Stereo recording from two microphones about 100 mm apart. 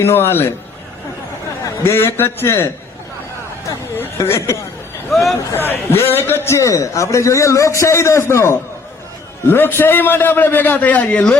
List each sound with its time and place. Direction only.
0.0 s a man's voice: 25° left (ahead or behind)
1.6 s a man's voice: 25° left (ahead or behind)
3.7 s a sound: 20° left (ahead or behind)
4.2 s a man's voice: 30° left (ahead or behind)
5.1 s speech: centre (ahead or behind)
5.5 s a man's voice: 20° left (ahead or behind)